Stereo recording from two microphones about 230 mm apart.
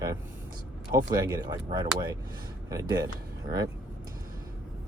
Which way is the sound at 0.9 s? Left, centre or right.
Centre.